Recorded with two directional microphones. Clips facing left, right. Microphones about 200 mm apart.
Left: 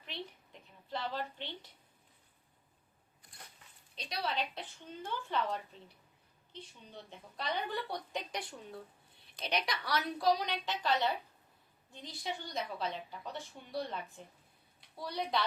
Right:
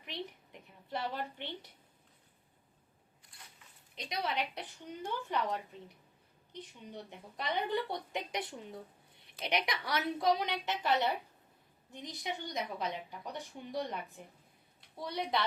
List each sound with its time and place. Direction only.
0.0 s a sound: 20° right (ahead or behind)
3.9 s speech: 20° right (ahead or behind)
12.5 s speech: 15° right (ahead or behind)
15.1 s speech: 20° right (ahead or behind)